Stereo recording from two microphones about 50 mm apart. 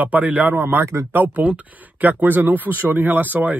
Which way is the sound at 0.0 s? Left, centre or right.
Right.